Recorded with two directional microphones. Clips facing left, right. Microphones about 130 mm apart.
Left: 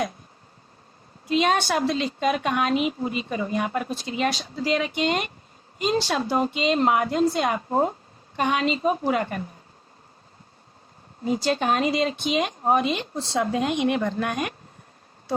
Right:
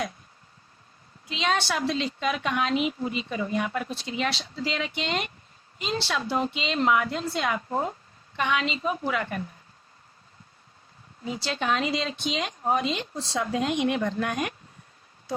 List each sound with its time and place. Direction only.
1.3 s a woman's voice: 45° left (ahead or behind)
11.2 s a woman's voice: 45° left (ahead or behind)